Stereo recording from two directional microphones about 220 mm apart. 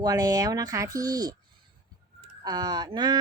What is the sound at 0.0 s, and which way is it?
Speech, 15° right (ahead or behind).